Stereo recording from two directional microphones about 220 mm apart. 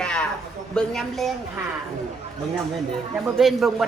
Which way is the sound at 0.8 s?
Centre (ahead or behind).